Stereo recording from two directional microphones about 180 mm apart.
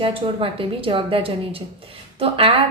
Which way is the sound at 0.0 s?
30° right (ahead or behind).